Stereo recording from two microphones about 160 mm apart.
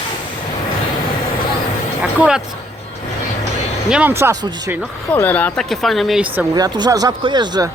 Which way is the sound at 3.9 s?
10° right (ahead or behind).